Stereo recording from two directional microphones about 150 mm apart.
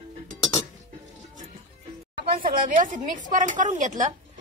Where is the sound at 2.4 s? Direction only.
65° right (ahead or behind).